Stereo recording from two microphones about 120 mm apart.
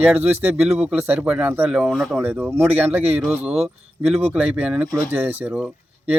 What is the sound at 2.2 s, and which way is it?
Speech, 15° right (ahead or behind).